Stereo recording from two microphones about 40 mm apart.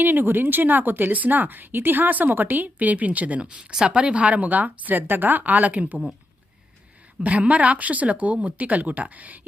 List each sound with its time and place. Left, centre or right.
0.0 s speech: right
1.1 s a woman's voice: right
3.4 s speech: right
4.2 s a woman's voice: right
7.2 s speech: right